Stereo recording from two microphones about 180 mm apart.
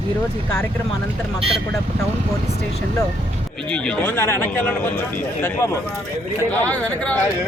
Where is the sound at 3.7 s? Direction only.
5° left (ahead or behind).